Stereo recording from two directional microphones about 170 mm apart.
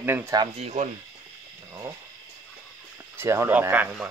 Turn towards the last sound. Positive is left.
turn(degrees=-10)  # may be behind; listen again after turning